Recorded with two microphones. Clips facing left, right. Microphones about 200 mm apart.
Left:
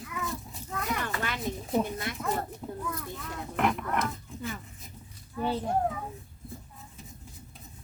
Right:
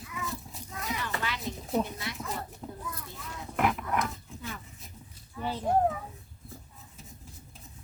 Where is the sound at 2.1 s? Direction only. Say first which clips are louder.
Left 2 dB; 50° left (ahead or behind).